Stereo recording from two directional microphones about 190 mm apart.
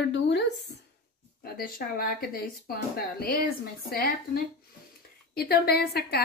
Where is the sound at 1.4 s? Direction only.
50° left (ahead or behind).